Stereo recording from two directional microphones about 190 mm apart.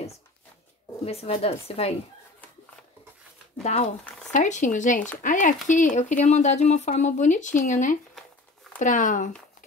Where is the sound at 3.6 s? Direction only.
35° left (ahead or behind).